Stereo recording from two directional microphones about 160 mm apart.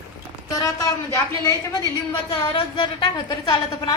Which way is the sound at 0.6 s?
20° left (ahead or behind).